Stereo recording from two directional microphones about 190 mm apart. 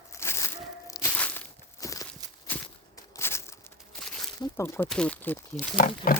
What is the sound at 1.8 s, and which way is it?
Walk, 20° left (ahead or behind).